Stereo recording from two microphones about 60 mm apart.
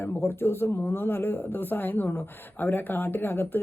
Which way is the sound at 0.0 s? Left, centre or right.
Left.